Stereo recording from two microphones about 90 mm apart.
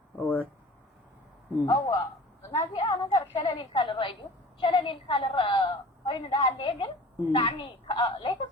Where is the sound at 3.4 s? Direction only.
65° left (ahead or behind).